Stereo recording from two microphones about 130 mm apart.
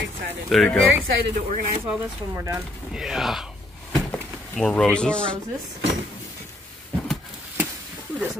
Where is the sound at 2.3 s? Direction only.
25° right (ahead or behind).